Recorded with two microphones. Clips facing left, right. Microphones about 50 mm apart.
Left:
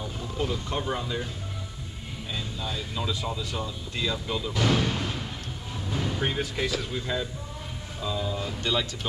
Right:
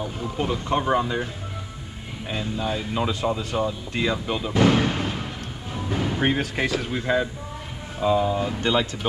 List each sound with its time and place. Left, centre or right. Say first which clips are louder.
0.0 s speech: right 4 dB; right
2.3 s speech: right 8 dB; right